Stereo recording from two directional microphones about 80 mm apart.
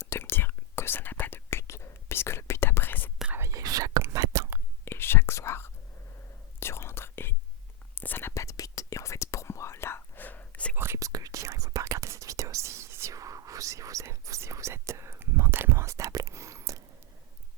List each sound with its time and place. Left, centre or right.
0.0 s whispering: left
3.5 s whispering: right
4.9 s whispering: left
8.3 s whispering: left; by 10.8 s centre
10.8 s whispering: right
11.0 s whispering: right